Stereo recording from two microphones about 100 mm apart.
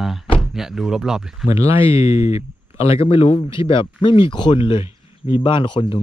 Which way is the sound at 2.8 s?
80° left.